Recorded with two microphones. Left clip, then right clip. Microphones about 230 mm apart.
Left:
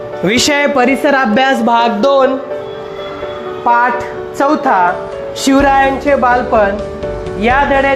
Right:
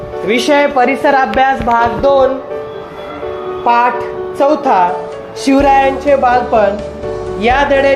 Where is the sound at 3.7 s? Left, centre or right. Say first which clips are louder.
Even; left.